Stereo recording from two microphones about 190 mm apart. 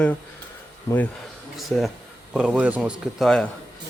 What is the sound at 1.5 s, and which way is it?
Speech, centre (ahead or behind).